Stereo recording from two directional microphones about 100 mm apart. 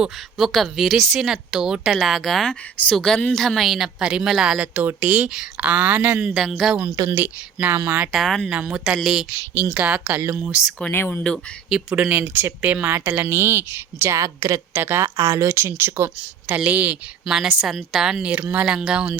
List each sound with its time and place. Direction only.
0.0 s a woman's voice: centre (ahead or behind)
4.7 s a woman's voice: 20° right (ahead or behind); by 6.7 s centre (ahead or behind)
7.1 s a woman's voice: 15° right (ahead or behind)
8.1 s a woman's voice: centre (ahead or behind)
8.4 s a woman's voice: 10° right (ahead or behind)
10.9 s speech: 20° left (ahead or behind)
11.9 s speech: 15° right (ahead or behind); by 15.5 s 30° right (ahead or behind)
15.8 s a woman's voice: 20° right (ahead or behind)
17.2 s a woman's voice: 5° right (ahead or behind)